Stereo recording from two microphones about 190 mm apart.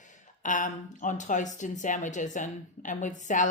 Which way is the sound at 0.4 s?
40° left (ahead or behind).